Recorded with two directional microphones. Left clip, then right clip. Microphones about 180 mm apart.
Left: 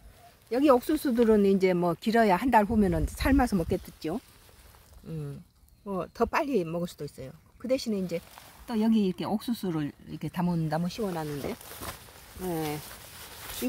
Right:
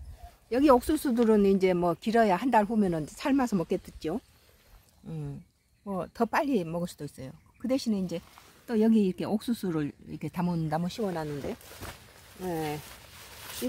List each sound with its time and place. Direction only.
0.5 s speech: 10° right (ahead or behind)
12.4 s speech: 25° left (ahead or behind)